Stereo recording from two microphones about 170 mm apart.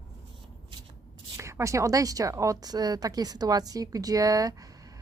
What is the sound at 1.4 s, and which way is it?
A woman's voice, 15° right (ahead or behind).